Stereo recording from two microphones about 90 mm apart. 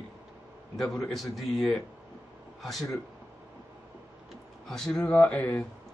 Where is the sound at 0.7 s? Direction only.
5° left (ahead or behind).